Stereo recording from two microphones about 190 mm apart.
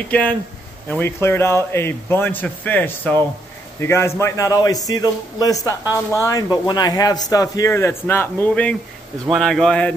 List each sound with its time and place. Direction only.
0.8 s a man's voice: 10° left (ahead or behind)